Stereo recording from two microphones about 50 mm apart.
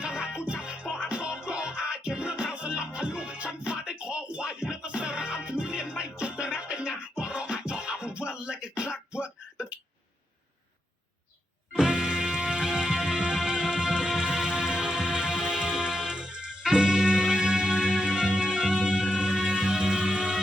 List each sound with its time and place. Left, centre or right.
0.0 s music: centre
9.2 s a sound: right
11.7 s music: centre